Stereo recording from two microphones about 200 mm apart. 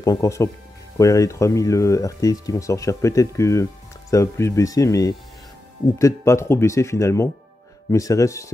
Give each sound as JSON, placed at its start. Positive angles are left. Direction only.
{"t": 0.0, "sound": "speech", "side_deg": 15}